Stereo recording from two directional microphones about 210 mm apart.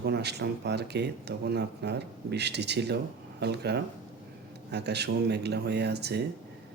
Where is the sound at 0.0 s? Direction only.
50° right (ahead or behind).